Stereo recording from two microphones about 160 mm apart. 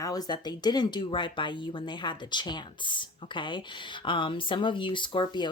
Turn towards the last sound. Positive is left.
turn(degrees=30)  # may be behind; listen again after turning